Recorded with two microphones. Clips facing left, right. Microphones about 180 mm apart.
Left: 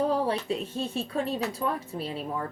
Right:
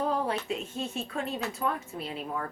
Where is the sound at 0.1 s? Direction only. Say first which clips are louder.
Left 3 dB; 35° left (ahead or behind).